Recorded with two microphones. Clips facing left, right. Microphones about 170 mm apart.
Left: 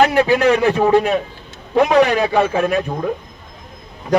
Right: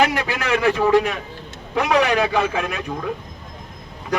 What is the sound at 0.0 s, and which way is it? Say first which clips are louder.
Speech: left 8 dB; 40° left (ahead or behind).